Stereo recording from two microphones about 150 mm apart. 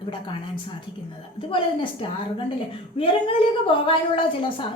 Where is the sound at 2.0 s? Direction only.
35° left (ahead or behind).